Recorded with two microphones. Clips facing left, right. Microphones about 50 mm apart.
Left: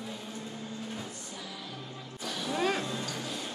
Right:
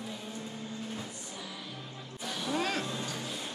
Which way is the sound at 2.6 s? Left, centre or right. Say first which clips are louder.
Left 4 dB; centre.